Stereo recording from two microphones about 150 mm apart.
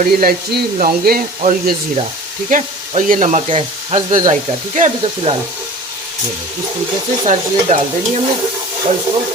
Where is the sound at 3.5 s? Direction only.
40° right (ahead or behind).